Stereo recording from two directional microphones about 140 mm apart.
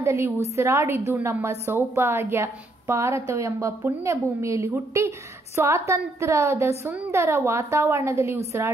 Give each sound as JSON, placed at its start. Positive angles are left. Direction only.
{"t": 0.0, "sound": "a woman's voice", "side_deg": -20}